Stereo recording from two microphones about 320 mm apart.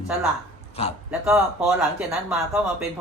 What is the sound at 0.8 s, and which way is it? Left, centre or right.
Speech, centre.